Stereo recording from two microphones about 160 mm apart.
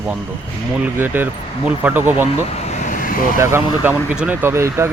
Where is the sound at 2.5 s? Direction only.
45° left (ahead or behind).